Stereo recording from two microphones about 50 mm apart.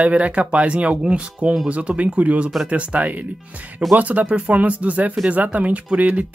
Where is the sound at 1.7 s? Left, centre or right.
Right.